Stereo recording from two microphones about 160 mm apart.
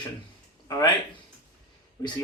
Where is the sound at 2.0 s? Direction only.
25° left (ahead or behind).